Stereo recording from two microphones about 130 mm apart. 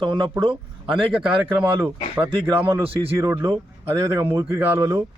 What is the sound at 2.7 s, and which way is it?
A man's voice, 25° right (ahead or behind).